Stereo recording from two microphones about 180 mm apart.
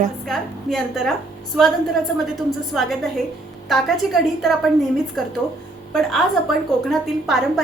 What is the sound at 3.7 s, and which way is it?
Speech, centre (ahead or behind).